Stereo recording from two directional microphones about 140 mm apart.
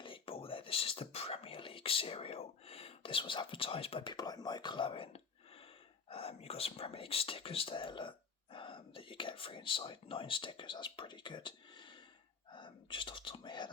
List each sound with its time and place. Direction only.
0.0 s whispering: 40° left (ahead or behind)
6.1 s speech: 45° left (ahead or behind)
12.5 s whispering: 35° left (ahead or behind)